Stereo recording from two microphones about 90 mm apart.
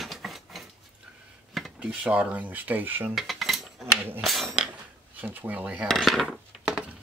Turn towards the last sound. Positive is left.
turn(degrees=-5)  # may be behind; listen again after turning